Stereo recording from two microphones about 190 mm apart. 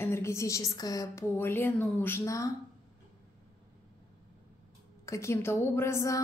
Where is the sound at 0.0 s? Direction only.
15° left (ahead or behind).